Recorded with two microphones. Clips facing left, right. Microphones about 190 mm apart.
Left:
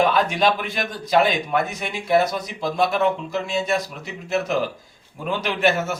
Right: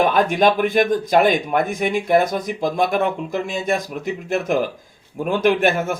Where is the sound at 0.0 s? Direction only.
50° right (ahead or behind).